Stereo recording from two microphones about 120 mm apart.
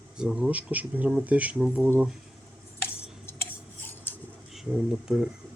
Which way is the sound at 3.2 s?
20° left (ahead or behind).